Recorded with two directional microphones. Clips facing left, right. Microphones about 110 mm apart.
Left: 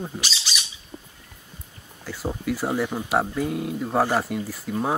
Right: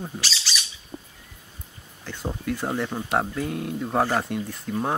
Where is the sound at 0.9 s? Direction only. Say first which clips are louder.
Right 2 dB; 15° right (ahead or behind).